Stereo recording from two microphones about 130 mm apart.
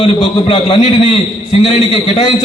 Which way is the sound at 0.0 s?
45° left (ahead or behind).